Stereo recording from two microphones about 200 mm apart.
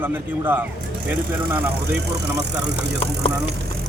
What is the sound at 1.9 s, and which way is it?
Speech, 55° right (ahead or behind).